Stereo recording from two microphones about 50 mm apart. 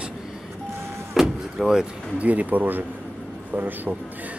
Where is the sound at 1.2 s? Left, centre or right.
Centre.